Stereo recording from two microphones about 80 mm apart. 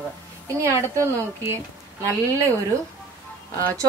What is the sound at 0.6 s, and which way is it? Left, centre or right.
A woman's voice, right.